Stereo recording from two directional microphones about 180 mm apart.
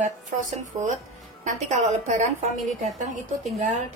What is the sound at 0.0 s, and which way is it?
A woman's voice, 45° right (ahead or behind).